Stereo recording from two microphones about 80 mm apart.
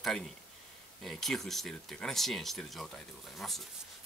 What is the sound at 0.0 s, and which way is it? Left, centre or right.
Speech, centre.